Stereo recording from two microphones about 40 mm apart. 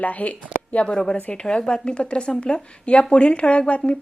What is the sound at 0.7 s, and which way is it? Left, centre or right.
A woman's voice, left.